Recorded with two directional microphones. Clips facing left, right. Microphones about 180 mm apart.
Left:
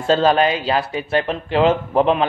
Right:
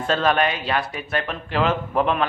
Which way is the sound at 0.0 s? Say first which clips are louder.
Left 5 dB; 30° left (ahead or behind).